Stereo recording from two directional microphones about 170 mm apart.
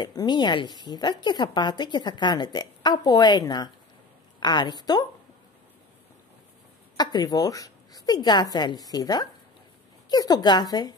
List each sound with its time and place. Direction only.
0.0 s a woman's voice: 25° left (ahead or behind)
7.0 s a woman's voice: 25° left (ahead or behind)